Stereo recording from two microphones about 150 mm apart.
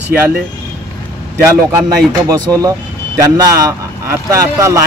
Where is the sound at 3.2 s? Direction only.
20° right (ahead or behind).